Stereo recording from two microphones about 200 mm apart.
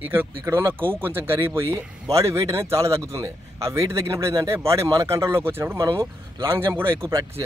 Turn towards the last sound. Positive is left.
turn(degrees=-15)  # may be behind; listen again after turning